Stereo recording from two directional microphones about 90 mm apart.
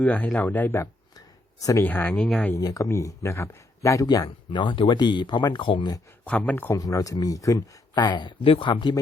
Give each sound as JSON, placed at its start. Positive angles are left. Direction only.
{"t": 0.0, "sound": "speech", "side_deg": 15}
{"t": 2.6, "sound": "speech", "side_deg": 40}
{"t": 4.0, "sound": "speech", "side_deg": 45}
{"t": 4.6, "sound": "speech", "side_deg": 65}
{"t": 6.2, "sound": "speech", "side_deg": 15}
{"t": 6.7, "sound": "speech", "side_deg": 40}
{"t": 8.4, "sound": "speech", "side_deg": 70}